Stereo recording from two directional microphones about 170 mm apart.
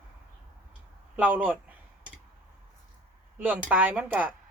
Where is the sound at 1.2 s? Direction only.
10° right (ahead or behind).